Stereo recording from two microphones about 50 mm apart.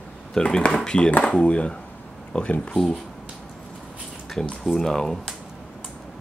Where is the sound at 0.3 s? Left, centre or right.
Centre.